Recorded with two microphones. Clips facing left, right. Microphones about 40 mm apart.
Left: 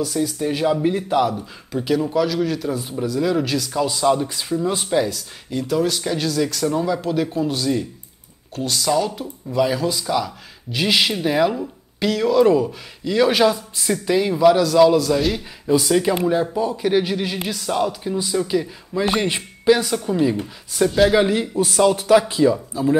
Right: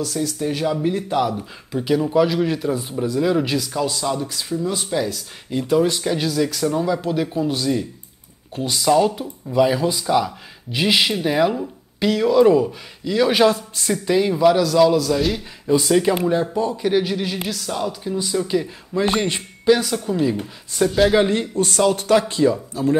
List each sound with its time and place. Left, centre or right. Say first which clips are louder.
0.0 s a man's voice: left 1 dB; centre
1.3 s a man's voice: even; centre
2.2 s speech: right 1 dB; centre
3.7 s a man's voice: left 1 dB; centre
4.0 s speech: left 5 dB; centre
5.5 s a man's voice: right 2 dB; centre